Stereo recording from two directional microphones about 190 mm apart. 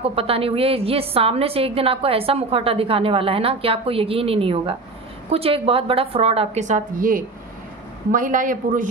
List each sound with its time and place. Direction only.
0.0 s a woman's voice: 30° right (ahead or behind)